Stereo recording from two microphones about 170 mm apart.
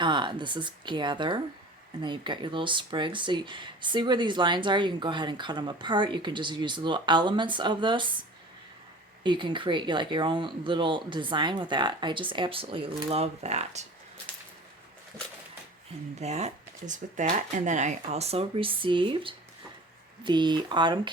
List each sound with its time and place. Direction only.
0.0 s speech: 25° right (ahead or behind)
9.2 s speech: 30° right (ahead or behind)
16.2 s speech: 40° right (ahead or behind)